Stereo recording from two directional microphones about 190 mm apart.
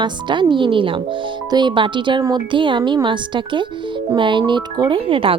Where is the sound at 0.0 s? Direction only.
25° right (ahead or behind).